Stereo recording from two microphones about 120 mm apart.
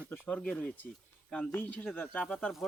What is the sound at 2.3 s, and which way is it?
Speech, centre (ahead or behind).